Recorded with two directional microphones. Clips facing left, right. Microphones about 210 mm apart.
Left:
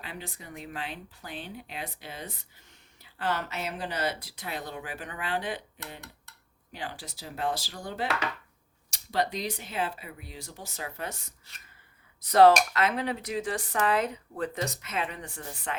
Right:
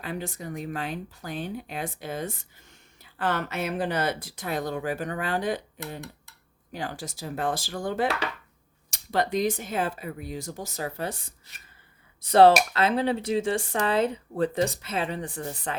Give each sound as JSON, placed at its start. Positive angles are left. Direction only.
{"t": 0.0, "sound": "speech", "side_deg": -45}